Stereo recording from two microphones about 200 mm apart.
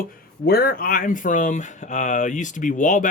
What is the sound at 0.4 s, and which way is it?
Speech, 50° left (ahead or behind).